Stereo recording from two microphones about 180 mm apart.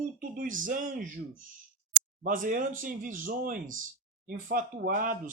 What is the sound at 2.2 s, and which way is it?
Speech, 50° right (ahead or behind).